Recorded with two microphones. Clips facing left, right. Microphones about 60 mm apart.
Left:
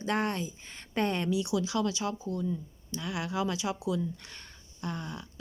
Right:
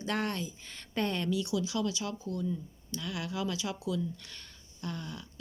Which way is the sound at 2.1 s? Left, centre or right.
Centre.